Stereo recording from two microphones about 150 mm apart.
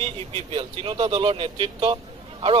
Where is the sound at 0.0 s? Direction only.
40° right (ahead or behind).